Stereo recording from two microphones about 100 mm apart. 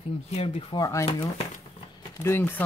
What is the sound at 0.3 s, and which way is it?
Speech, 90° left.